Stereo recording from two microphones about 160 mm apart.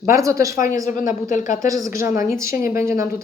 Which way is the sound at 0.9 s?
55° left (ahead or behind).